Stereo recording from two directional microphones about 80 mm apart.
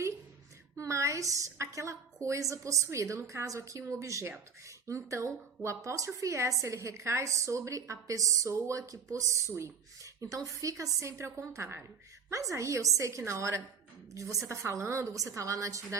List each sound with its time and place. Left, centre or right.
0.8 s a woman's voice: right
9.5 s a woman's voice: right